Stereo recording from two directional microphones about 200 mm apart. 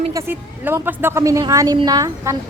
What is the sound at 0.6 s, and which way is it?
Speech, 10° right (ahead or behind).